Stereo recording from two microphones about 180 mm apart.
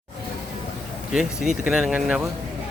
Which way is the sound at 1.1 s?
5° right (ahead or behind).